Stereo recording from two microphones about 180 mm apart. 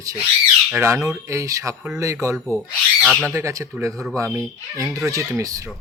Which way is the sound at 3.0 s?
5° right (ahead or behind).